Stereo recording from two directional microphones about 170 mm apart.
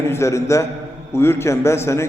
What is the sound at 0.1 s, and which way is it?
A man's voice, 15° left (ahead or behind).